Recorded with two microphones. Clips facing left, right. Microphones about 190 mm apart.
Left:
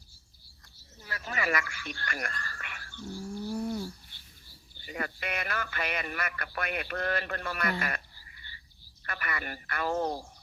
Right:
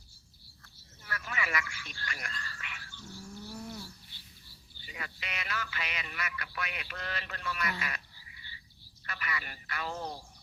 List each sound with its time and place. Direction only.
1.2 s a sound: 35° left (ahead or behind)
1.5 s speech: 55° left (ahead or behind)
3.0 s bird: 35° left (ahead or behind)
4.9 s speech: 50° left (ahead or behind)